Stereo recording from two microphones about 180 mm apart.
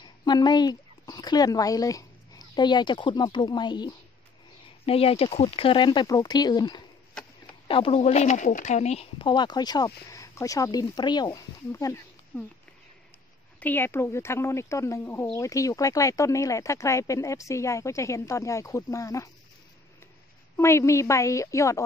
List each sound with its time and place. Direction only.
0.0 s speech: 25° left (ahead or behind)
13.6 s speech: 10° left (ahead or behind)
20.5 s speech: 15° left (ahead or behind)